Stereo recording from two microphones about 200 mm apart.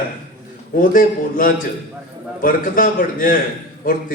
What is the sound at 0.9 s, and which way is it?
A man's voice, 45° left (ahead or behind).